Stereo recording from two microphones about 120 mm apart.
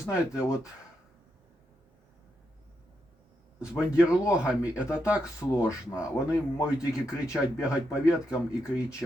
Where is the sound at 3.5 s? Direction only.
10° right (ahead or behind).